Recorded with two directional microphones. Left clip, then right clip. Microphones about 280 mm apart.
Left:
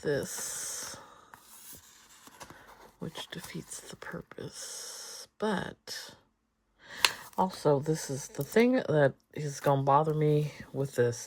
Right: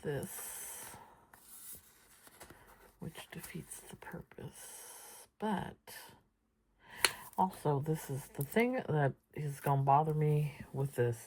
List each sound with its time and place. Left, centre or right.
0.0 s speech: centre
3.1 s speech: centre